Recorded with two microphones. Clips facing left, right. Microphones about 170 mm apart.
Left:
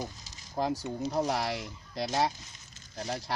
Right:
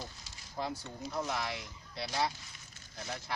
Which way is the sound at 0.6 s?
40° left (ahead or behind).